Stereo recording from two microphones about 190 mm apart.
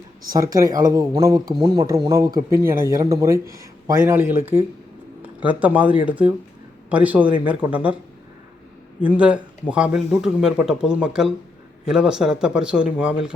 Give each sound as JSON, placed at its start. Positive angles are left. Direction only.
{"t": 0.3, "sound": "speech", "side_deg": -15}
{"t": 9.0, "sound": "speech", "side_deg": -5}